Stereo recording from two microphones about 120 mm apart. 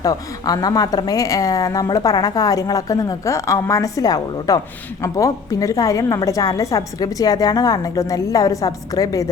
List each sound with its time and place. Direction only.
0.0 s speech: 30° left (ahead or behind)